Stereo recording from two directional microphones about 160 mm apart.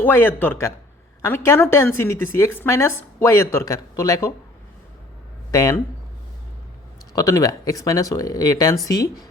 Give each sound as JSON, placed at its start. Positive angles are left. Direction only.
{"t": 0.0, "sound": "a woman's voice", "side_deg": 15}
{"t": 5.5, "sound": "speech", "side_deg": 20}
{"t": 7.1, "sound": "speech", "side_deg": 20}